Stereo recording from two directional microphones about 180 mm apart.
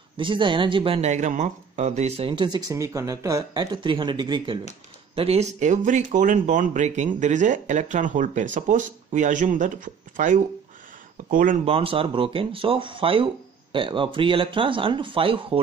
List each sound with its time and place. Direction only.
0.2 s speech: 25° right (ahead or behind); by 11.6 s 50° right (ahead or behind)
11.6 s speech: 30° right (ahead or behind)